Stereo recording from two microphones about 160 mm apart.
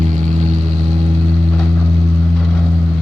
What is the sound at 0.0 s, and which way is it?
Vehicle, 50° right (ahead or behind).